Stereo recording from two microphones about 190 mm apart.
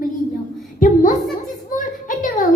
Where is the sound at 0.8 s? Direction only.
45° left (ahead or behind).